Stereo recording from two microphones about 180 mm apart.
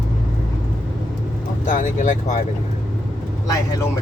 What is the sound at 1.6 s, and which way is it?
Speech, 45° left (ahead or behind).